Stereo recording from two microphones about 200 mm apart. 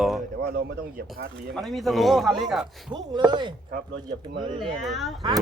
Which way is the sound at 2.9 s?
20° right (ahead or behind).